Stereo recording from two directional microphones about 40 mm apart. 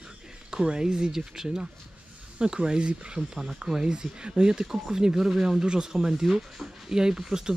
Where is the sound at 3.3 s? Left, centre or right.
Centre.